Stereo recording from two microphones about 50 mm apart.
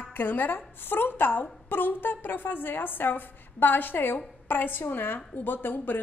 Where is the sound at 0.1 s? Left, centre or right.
Left.